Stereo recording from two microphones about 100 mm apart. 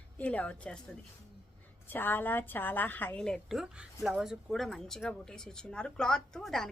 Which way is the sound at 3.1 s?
5° left (ahead or behind).